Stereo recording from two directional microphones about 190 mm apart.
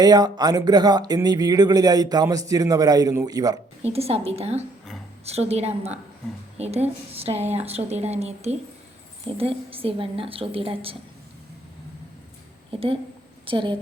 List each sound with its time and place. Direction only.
0.0 s speech: 20° right (ahead or behind)
3.8 s speech: 30° right (ahead or behind)
12.7 s a woman's voice: 30° right (ahead or behind)